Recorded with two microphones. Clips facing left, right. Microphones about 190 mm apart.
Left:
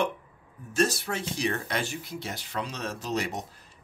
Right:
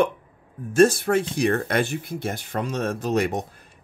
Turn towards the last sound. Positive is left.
turn(degrees=-55)  # may be behind; listen again after turning